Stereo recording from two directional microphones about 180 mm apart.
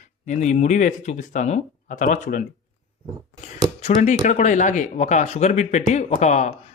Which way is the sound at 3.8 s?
35° left (ahead or behind).